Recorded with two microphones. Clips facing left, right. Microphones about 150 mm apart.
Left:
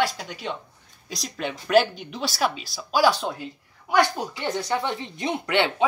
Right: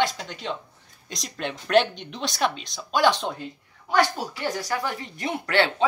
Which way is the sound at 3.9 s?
15° left (ahead or behind).